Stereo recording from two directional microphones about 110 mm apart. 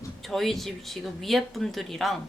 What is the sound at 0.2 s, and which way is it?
Speech, centre (ahead or behind).